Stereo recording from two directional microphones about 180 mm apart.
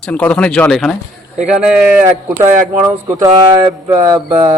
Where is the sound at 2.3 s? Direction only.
15° right (ahead or behind).